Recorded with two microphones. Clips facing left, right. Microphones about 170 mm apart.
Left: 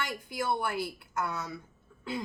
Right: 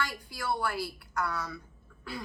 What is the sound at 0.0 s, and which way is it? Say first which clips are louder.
A woman's voice: left 2 dB; 20° left (ahead or behind).